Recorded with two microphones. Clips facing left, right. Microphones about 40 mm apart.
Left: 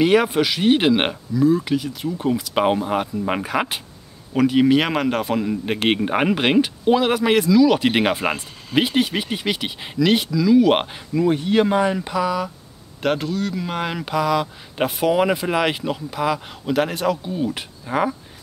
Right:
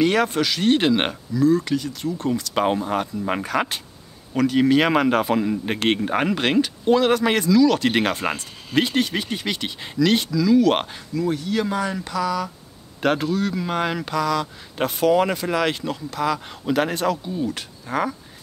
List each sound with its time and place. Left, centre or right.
0.0 s a man's voice: centre
11.2 s speech: left
13.0 s a man's voice: centre
16.6 s a man's voice: centre
17.2 s a man's voice: centre